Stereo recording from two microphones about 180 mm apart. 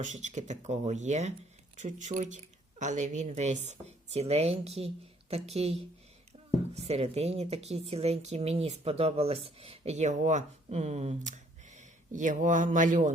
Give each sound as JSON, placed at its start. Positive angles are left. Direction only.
{"t": 0.0, "sound": "a woman's voice", "side_deg": -40}